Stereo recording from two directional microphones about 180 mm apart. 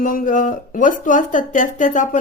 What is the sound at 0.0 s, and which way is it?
A woman's voice, 50° left (ahead or behind).